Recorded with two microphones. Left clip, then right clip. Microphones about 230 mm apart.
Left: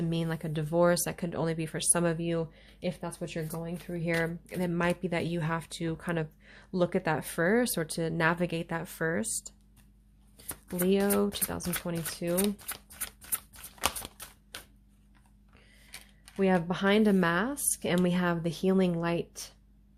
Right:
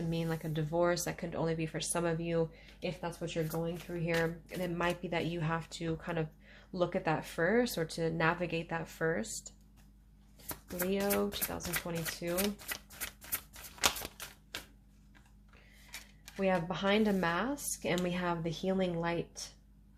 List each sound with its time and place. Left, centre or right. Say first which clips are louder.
0.1 s speech: left 3 dB; left
10.8 s speech: left 6 dB; left
11.7 s speech: right 2 dB; left
12.4 s shuffling cards: left 3 dB; left
14.5 s a sound: right 1 dB; left
16.4 s speech: left 4 dB; left